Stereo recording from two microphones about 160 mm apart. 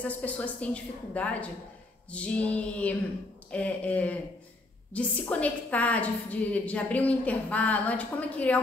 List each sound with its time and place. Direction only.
0.0 s a woman's voice: 10° left (ahead or behind)